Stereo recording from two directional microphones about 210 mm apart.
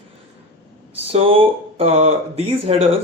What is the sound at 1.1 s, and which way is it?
Speech, 25° right (ahead or behind).